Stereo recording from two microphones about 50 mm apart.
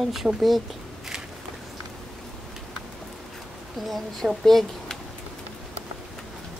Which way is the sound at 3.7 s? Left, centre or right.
Centre.